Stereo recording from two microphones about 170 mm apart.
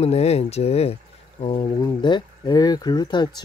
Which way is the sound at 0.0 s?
40° left (ahead or behind).